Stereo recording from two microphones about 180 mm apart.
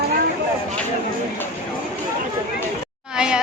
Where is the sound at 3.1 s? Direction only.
5° right (ahead or behind).